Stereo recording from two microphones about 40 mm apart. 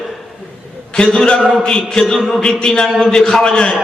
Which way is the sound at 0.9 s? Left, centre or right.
Left.